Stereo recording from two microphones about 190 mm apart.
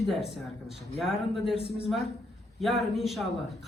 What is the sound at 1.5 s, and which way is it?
Speech, 30° left (ahead or behind).